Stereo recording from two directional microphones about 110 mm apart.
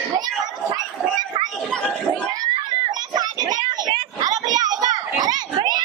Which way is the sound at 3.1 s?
40° right (ahead or behind).